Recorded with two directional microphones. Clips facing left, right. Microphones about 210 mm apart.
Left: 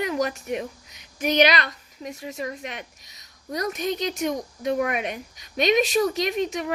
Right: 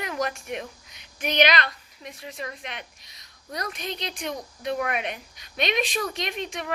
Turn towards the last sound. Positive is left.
turn(degrees=40)  # may be behind; listen again after turning